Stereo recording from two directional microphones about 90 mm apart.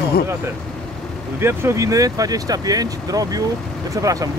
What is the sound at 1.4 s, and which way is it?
Speech, 30° right (ahead or behind).